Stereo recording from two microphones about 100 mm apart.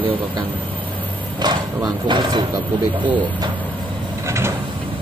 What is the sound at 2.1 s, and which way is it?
Speech, 50° right (ahead or behind).